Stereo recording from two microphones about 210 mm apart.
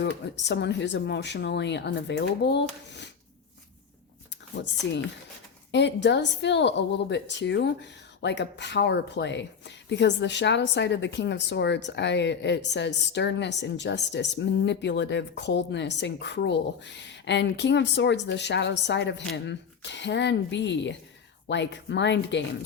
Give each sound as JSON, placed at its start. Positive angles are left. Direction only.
{"t": 0.0, "sound": "a woman's voice", "side_deg": 55}
{"t": 4.5, "sound": "a woman's voice", "side_deg": 55}